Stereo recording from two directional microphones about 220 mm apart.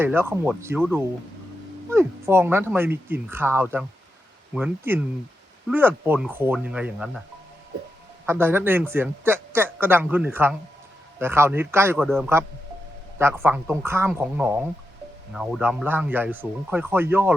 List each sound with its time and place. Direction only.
0.0 s a man's voice: 10° right (ahead or behind)
8.3 s a man's voice: 10° right (ahead or behind)